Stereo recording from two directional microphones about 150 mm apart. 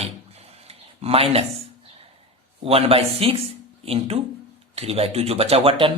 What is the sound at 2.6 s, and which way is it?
Speech, 40° right (ahead or behind).